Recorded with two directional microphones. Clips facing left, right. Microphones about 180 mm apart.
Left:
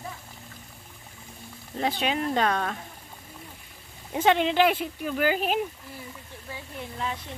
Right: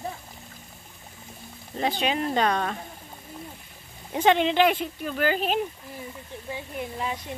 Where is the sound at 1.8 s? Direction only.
Centre (ahead or behind).